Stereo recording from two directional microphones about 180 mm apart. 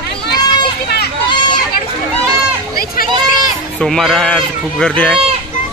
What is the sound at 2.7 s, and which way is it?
Run, 55° left (ahead or behind).